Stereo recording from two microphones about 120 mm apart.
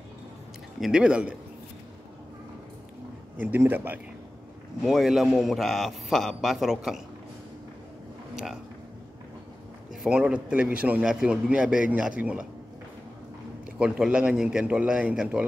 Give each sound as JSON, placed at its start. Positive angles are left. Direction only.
{"t": 0.7, "sound": "a man's voice", "side_deg": -5}
{"t": 3.3, "sound": "a man's voice", "side_deg": -20}
{"t": 4.8, "sound": "a man's voice", "side_deg": 0}
{"t": 10.0, "sound": "a man's voice", "side_deg": -10}
{"t": 13.7, "sound": "a man's voice", "side_deg": -5}